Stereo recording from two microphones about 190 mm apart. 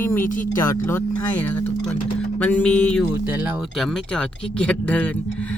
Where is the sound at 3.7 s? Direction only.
Centre (ahead or behind).